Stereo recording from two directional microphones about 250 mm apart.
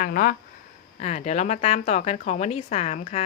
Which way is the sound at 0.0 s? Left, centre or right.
Left.